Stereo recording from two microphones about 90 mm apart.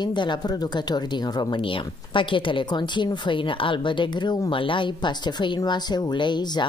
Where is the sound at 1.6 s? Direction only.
70° left (ahead or behind); by 6.7 s 55° left (ahead or behind).